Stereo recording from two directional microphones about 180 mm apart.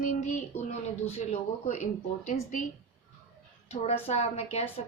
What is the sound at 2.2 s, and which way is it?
Speech, 40° left (ahead or behind).